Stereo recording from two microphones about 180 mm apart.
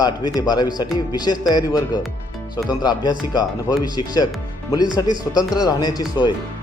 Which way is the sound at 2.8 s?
20° left (ahead or behind).